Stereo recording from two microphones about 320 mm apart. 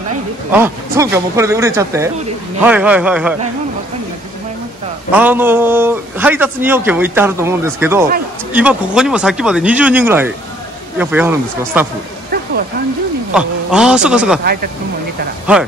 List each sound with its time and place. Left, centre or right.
0.5 s a man's voice: centre
5.1 s a man's voice: centre
13.3 s speech: centre
14.4 s speech: right